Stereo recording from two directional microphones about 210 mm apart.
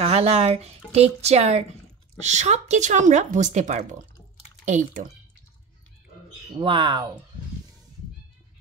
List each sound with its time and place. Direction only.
0.0 s speech: 30° right (ahead or behind)
6.6 s speech: 25° right (ahead or behind)